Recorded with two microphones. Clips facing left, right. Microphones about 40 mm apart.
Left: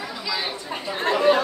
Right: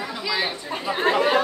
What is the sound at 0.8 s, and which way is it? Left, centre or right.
Speech, centre.